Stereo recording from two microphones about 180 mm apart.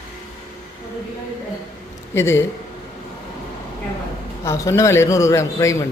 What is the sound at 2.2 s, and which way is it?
Speech, 15° left (ahead or behind).